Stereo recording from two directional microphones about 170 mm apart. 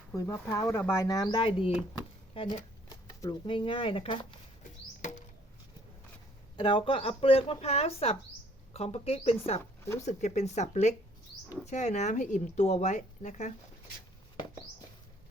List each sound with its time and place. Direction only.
0.1 s speech: 20° left (ahead or behind)
6.6 s speech: 30° left (ahead or behind); by 13.5 s 45° left (ahead or behind)